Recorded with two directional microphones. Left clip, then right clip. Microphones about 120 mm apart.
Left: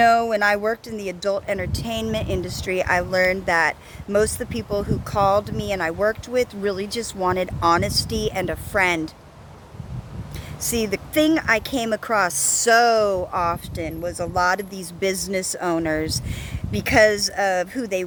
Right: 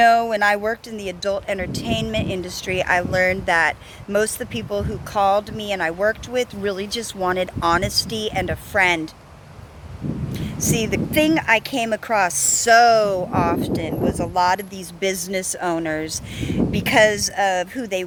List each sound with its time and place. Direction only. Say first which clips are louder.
0.0 s speech: right 2 dB; 40° left (ahead or behind)
10.3 s speech: right 2 dB; 40° left (ahead or behind)